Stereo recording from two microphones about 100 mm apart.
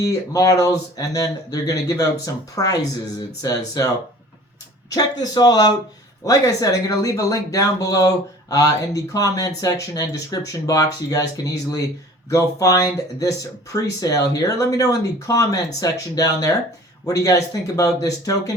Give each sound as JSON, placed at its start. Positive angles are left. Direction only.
{"t": 0.0, "sound": "speech", "side_deg": 35}
{"t": 4.9, "sound": "speech", "side_deg": 40}
{"t": 12.3, "sound": "speech", "side_deg": 35}